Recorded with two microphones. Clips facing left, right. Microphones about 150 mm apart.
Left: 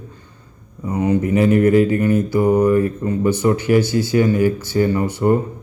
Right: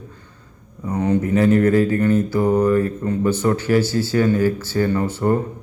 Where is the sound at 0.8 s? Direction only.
10° left (ahead or behind).